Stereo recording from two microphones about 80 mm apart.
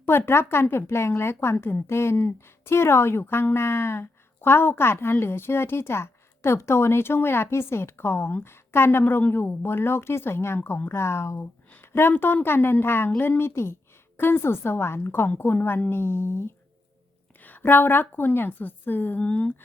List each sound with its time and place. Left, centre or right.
0.0 s a woman's voice: left